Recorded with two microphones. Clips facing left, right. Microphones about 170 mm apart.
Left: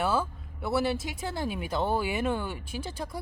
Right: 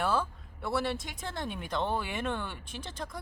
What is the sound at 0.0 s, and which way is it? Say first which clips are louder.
Speech: left 2 dB; 5° left (ahead or behind).